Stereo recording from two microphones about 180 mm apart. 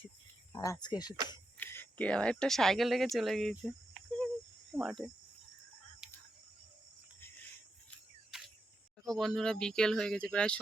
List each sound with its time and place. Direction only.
0.5 s speech: 20° left (ahead or behind)
1.5 s speech: 10° left (ahead or behind)
6.0 s cricket: 5° right (ahead or behind)
8.3 s a sound: 5° right (ahead or behind)
9.0 s speech: centre (ahead or behind)